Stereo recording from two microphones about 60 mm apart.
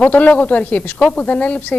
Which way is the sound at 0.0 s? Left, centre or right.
Left.